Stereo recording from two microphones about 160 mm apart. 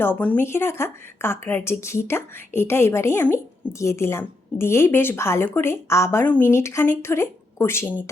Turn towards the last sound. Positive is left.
turn(degrees=15)  # may be behind; listen again after turning